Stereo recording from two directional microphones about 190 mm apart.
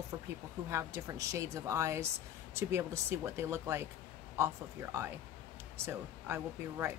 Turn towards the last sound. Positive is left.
turn(degrees=-15)  # may be behind; listen again after turning